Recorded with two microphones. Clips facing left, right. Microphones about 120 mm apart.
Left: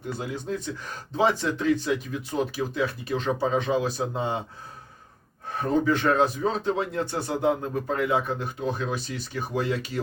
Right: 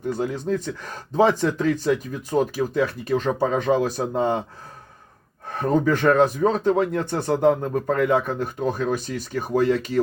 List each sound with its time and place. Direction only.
0.1 s a man's voice: 45° right (ahead or behind)
5.5 s a man's voice: 45° right (ahead or behind)